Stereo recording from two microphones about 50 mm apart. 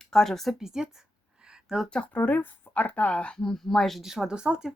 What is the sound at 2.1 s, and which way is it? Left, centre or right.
Speech, left.